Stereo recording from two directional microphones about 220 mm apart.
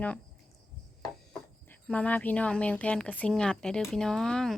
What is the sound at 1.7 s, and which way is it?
Speech, 5° left (ahead or behind).